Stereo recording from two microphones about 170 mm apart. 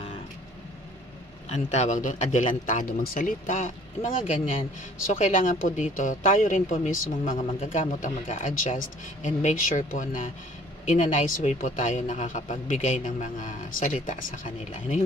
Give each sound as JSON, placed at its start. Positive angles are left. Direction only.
{"t": 1.5, "sound": "speech", "side_deg": 45}